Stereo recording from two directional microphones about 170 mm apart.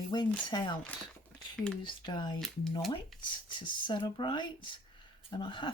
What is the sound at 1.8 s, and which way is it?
Speech, 25° left (ahead or behind).